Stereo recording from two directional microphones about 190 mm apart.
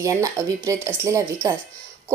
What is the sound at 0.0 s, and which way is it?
Speech, 15° right (ahead or behind).